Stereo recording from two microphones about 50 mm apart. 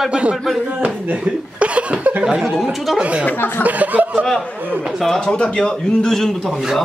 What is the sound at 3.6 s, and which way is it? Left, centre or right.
Speech, right.